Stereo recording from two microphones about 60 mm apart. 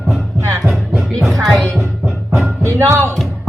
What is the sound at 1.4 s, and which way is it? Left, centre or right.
Speech, centre.